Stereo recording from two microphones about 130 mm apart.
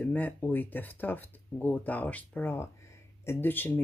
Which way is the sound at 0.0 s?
15° left (ahead or behind).